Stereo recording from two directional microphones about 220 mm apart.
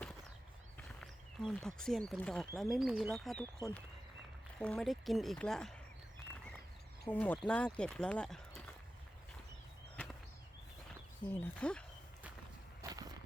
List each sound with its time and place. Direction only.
1.0 s speech: centre (ahead or behind)
4.6 s speech: 5° left (ahead or behind)
7.0 s speech: 5° left (ahead or behind)
9.9 s a sound: 5° left (ahead or behind)
11.3 s speech: 10° left (ahead or behind)
12.8 s a sound: 15° right (ahead or behind)